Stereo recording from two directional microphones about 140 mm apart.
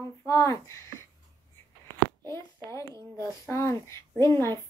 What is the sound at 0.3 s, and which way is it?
Speech, 20° left (ahead or behind).